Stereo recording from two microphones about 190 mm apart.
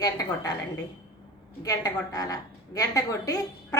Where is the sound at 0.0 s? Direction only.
20° left (ahead or behind).